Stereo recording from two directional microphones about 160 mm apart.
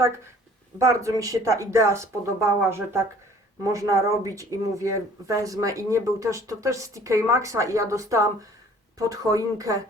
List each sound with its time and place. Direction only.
0.8 s speech: 20° right (ahead or behind)